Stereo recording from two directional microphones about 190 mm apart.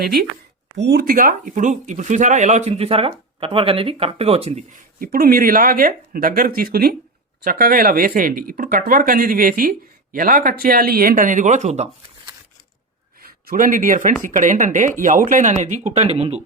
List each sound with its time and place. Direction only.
0.0 s speech: 55° right (ahead or behind); by 11.9 s 35° right (ahead or behind)
13.2 s speech: 50° right (ahead or behind); by 16.4 s 30° right (ahead or behind)